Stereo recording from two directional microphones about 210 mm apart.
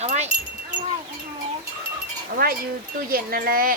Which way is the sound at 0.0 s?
30° right (ahead or behind).